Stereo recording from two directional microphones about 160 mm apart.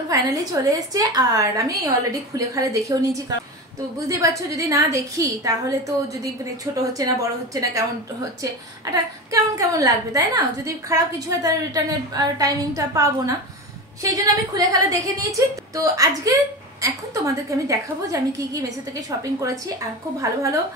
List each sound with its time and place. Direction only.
0.1 s a woman's voice: 20° right (ahead or behind)